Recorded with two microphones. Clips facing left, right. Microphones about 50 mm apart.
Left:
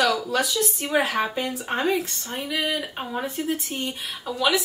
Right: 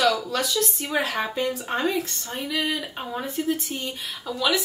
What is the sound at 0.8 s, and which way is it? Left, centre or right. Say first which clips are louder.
A woman's voice: left 6 dB; left.